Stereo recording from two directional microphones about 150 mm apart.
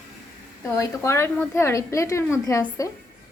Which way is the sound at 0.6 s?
20° left (ahead or behind).